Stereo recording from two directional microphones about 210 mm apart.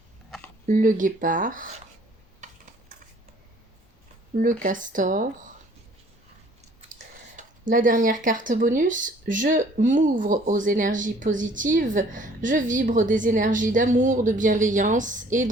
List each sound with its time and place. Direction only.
0.3 s a sound: centre (ahead or behind)
0.7 s speech: 40° right (ahead or behind)
4.4 s speech: 40° right (ahead or behind)
7.3 s speech: 40° right (ahead or behind)